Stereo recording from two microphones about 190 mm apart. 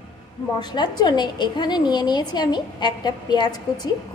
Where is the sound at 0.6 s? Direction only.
20° left (ahead or behind).